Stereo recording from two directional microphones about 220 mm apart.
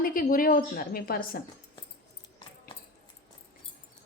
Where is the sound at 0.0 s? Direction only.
40° left (ahead or behind).